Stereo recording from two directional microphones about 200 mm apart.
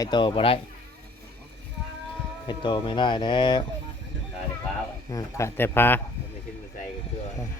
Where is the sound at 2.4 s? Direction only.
20° left (ahead or behind).